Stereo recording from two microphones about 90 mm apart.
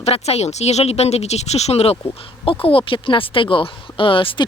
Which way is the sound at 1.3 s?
90° left.